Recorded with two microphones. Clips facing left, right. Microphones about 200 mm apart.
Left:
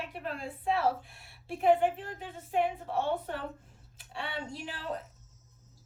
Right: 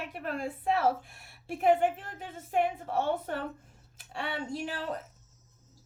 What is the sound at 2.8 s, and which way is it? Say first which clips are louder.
Speech: right 2 dB; 45° right (ahead or behind).